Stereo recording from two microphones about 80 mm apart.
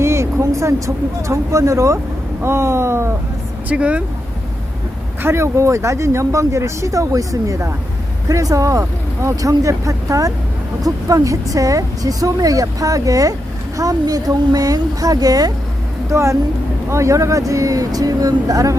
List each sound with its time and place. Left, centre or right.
0.0 s vehicle: right
0.4 s speech: right
3.7 s speech: centre
5.2 s a woman's voice: right
16.0 s a woman's voice: right